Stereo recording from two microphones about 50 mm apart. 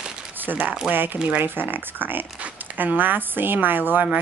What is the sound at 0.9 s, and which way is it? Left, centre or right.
Speech, right.